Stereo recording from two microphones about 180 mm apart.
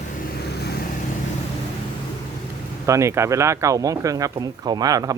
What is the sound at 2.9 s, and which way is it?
Speech, 15° right (ahead or behind).